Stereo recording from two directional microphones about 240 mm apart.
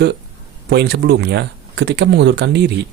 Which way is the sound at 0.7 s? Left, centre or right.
Right.